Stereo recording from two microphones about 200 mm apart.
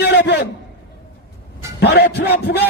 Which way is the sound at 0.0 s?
60° left (ahead or behind).